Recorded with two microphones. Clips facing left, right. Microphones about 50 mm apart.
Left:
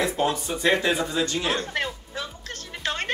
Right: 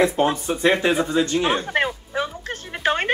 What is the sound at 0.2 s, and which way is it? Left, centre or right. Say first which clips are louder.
Speech: right 4 dB; right.